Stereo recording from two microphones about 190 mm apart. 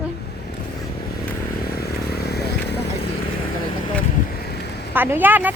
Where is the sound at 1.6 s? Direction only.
55° left (ahead or behind).